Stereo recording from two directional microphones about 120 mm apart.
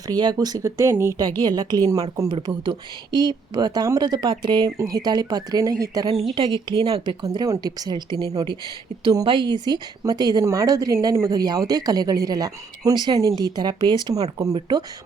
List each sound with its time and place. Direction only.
0.1 s speech: 35° right (ahead or behind)
1.4 s speech: 35° right (ahead or behind)
2.3 s speech: 40° right (ahead or behind)
6.3 s speech: 45° right (ahead or behind)
7.3 s speech: 25° right (ahead or behind)